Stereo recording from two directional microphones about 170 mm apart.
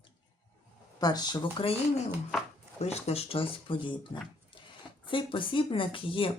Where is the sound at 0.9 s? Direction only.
25° left (ahead or behind).